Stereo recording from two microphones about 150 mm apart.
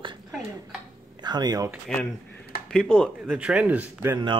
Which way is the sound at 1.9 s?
5° left (ahead or behind).